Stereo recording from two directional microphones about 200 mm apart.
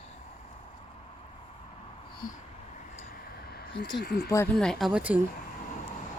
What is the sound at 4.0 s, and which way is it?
Speech, 55° left (ahead or behind).